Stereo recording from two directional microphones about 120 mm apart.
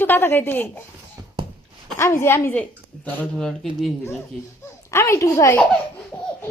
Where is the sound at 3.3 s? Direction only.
Centre (ahead or behind).